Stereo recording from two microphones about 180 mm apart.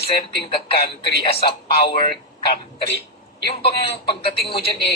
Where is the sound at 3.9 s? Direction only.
30° left (ahead or behind).